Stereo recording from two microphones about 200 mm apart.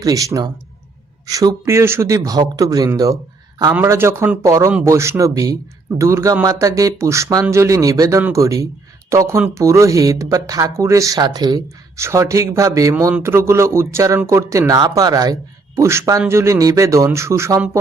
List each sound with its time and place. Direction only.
0.0 s speech: 15° right (ahead or behind)